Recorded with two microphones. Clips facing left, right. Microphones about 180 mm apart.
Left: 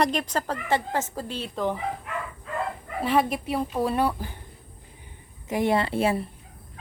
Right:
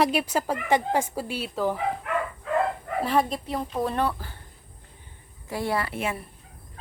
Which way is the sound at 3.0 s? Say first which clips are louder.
Left 2 dB; centre (ahead or behind).